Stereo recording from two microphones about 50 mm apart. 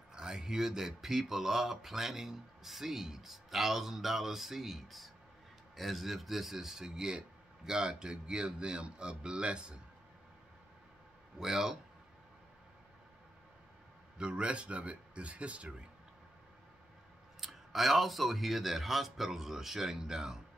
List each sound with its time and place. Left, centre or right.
0.1 s a man's voice: centre
11.3 s a man's voice: centre
14.1 s speech: centre
17.4 s speech: centre